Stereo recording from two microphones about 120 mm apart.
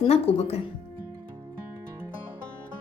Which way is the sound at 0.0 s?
55° left (ahead or behind).